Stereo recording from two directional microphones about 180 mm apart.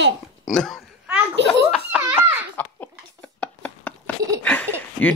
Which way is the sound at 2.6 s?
10° left (ahead or behind).